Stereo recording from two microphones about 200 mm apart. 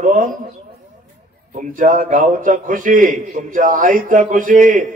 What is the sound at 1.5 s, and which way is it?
A man's voice, 40° right (ahead or behind).